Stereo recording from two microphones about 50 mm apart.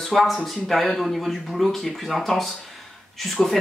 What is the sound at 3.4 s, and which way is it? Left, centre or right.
Speech, centre.